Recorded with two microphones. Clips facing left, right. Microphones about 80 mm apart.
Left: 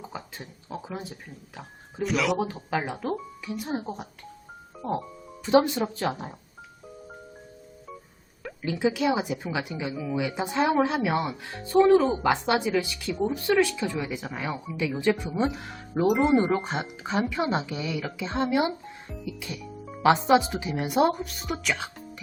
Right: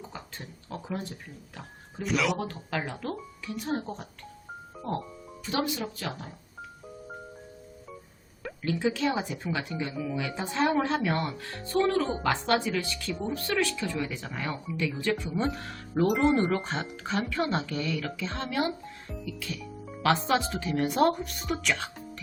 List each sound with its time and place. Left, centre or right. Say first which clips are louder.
0.1 s speech: left 3 dB; centre
2.4 s speech: left 4 dB; centre
5.5 s speech: left 9 dB; left
8.6 s speech: left 3 dB; centre